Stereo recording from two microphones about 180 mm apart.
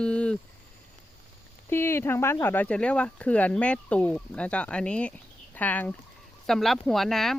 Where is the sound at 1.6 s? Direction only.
15° left (ahead or behind).